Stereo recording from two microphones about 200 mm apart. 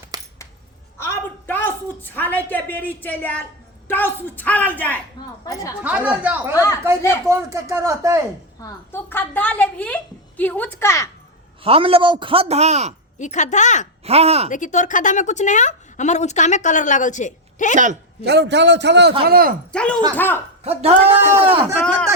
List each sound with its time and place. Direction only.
0.1 s a sound: 20° right (ahead or behind)
0.9 s a sound: 10° left (ahead or behind)
3.8 s a woman's voice: 10° left (ahead or behind)
5.8 s speech: 10° right (ahead or behind)
8.6 s a woman's voice: 10° left (ahead or behind)
11.6 s a man's voice: 30° right (ahead or behind)
13.1 s a woman's voice: 35° left (ahead or behind)
14.0 s a man's voice: 30° right (ahead or behind)
14.5 s a woman's voice: 40° left (ahead or behind)
18.3 s a man's voice: 60° right (ahead or behind)
19.2 s speech: 50° right (ahead or behind)
19.7 s a woman's voice: 5° left (ahead or behind)
20.7 s a man's voice: 30° right (ahead or behind)